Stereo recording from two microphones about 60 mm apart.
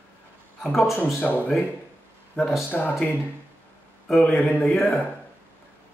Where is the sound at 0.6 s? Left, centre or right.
Centre.